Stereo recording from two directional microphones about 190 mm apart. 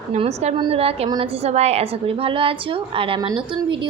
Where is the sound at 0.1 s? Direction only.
35° right (ahead or behind).